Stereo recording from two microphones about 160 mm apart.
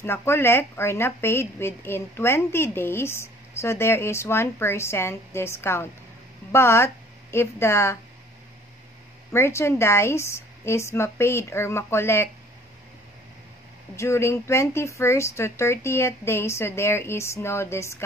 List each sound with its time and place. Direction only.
0.0 s a woman's voice: 15° left (ahead or behind)
9.3 s a woman's voice: 15° left (ahead or behind)
13.9 s a woman's voice: 15° left (ahead or behind)